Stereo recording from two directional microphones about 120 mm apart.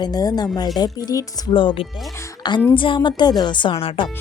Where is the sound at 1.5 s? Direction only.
45° left (ahead or behind).